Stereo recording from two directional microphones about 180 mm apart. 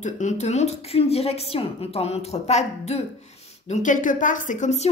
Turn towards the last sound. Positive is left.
turn(degrees=40)  # may be behind; listen again after turning